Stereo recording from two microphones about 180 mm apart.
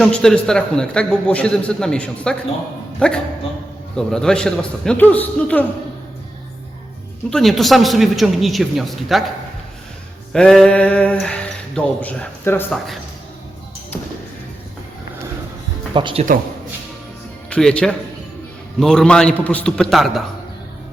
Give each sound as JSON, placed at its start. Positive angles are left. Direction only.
{"t": 0.0, "sound": "a man's voice", "side_deg": 0}
{"t": 7.3, "sound": "a man's voice", "side_deg": 0}
{"t": 10.3, "sound": "speech", "side_deg": 5}
{"t": 16.0, "sound": "speech", "side_deg": -25}
{"t": 17.5, "sound": "a man's voice", "side_deg": 5}